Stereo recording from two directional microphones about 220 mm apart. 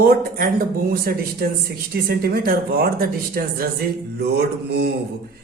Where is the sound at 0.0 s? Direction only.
40° right (ahead or behind).